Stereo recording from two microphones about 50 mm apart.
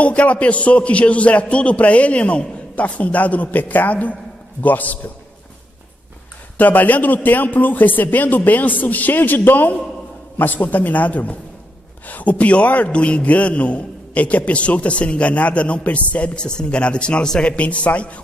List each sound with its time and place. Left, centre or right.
0.0 s a man's voice: left
6.6 s a man's voice: left